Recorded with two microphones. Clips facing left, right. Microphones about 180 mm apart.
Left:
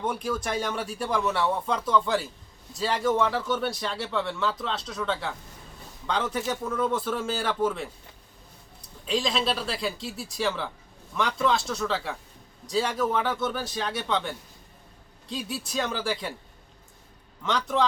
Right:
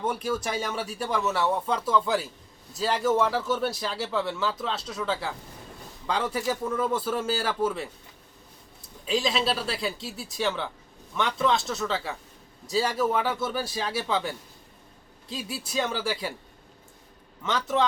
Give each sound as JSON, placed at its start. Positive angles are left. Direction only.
{"t": 0.0, "sound": "speech", "side_deg": -5}
{"t": 9.0, "sound": "speech", "side_deg": -5}
{"t": 17.4, "sound": "speech", "side_deg": 0}